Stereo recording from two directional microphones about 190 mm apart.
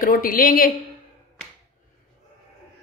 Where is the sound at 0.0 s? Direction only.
45° left (ahead or behind).